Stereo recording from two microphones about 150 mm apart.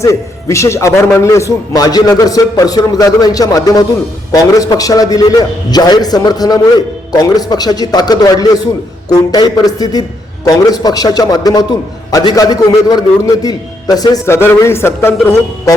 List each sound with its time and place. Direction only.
0.0 s a man's voice: 20° left (ahead or behind)